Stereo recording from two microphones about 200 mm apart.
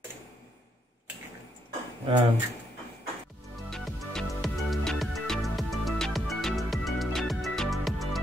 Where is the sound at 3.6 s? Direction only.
Centre (ahead or behind).